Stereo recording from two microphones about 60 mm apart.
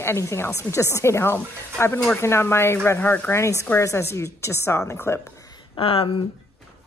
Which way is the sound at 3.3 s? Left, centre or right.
Left.